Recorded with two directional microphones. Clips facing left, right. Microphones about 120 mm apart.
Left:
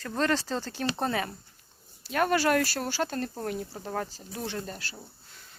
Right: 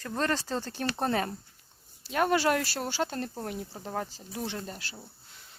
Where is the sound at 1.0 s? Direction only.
40° right (ahead or behind).